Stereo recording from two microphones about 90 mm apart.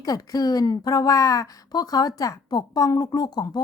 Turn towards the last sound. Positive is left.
turn(degrees=50)  # may be behind; listen again after turning